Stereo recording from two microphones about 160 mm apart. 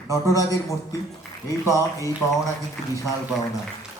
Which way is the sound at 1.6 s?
20° right (ahead or behind).